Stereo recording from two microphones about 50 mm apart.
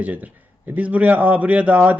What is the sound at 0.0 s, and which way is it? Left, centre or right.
A man's voice, right.